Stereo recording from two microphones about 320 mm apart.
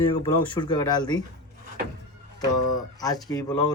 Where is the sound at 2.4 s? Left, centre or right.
Centre.